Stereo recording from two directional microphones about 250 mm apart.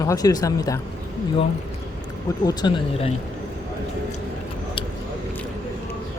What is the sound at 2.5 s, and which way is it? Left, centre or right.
Speech, centre.